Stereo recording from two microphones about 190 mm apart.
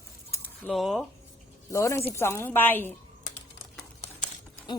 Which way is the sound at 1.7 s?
15° left (ahead or behind).